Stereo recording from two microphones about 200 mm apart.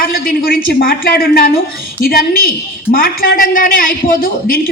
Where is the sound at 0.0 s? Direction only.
50° left (ahead or behind).